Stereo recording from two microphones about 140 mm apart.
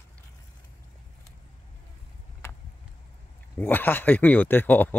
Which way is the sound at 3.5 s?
15° left (ahead or behind).